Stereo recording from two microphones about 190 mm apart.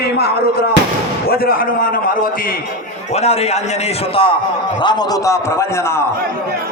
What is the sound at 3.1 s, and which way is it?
A man's voice, 35° left (ahead or behind).